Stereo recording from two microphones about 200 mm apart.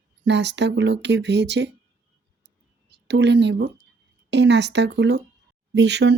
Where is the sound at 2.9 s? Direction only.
60° right (ahead or behind).